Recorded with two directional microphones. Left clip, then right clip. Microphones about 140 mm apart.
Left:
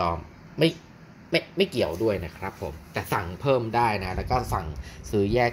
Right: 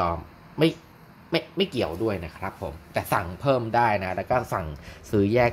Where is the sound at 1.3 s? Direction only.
35° right (ahead or behind).